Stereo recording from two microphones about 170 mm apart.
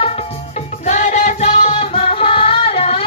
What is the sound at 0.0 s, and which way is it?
Music, 35° left (ahead or behind).